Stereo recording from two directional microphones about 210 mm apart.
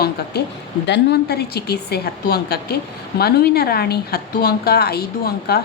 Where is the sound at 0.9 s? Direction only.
55° left (ahead or behind).